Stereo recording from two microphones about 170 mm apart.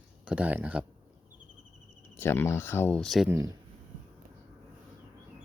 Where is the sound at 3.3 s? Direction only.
20° right (ahead or behind).